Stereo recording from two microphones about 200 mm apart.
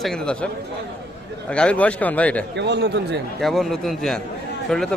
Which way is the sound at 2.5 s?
60° right (ahead or behind).